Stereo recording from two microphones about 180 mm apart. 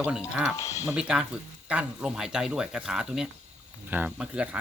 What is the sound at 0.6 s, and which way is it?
Speech, 15° left (ahead or behind).